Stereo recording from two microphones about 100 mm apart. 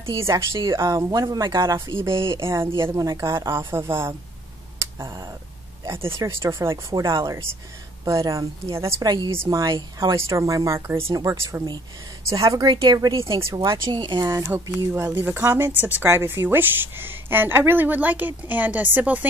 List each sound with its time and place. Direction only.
0.1 s speech: 30° right (ahead or behind)
2.1 s speech: 60° right (ahead or behind)
2.4 s speech: 25° right (ahead or behind)
9.0 s speech: 45° right (ahead or behind)
9.4 s speech: 35° right (ahead or behind)
13.2 s speech: 30° right (ahead or behind)
13.6 s speech: 40° right (ahead or behind)
14.5 s speech: 30° right (ahead or behind)
15.0 s speech: 20° right (ahead or behind)